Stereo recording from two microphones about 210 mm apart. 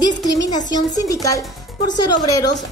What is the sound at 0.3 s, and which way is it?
Speech, 20° left (ahead or behind).